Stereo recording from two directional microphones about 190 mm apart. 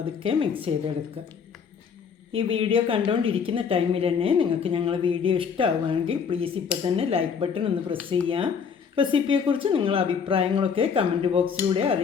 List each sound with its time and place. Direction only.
0.2 s a woman's voice: 30° right (ahead or behind)
2.3 s a woman's voice: 30° right (ahead or behind)